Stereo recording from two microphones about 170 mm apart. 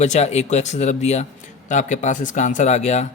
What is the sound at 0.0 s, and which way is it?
Speech, 40° left (ahead or behind).